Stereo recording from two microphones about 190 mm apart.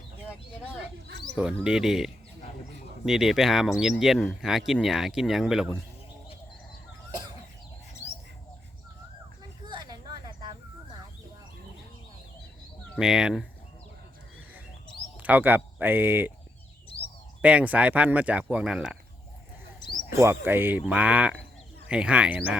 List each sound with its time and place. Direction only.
1.6 s speech: 5° right (ahead or behind)
3.1 s speech: centre (ahead or behind)
9.6 s a sound: 25° right (ahead or behind)
13.0 s speech: 5° right (ahead or behind)
15.2 s speech: 10° right (ahead or behind)
17.4 s speech: 5° right (ahead or behind)
20.1 s speech: 15° right (ahead or behind)